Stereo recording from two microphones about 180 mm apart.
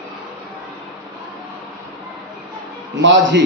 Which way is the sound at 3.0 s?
90° right.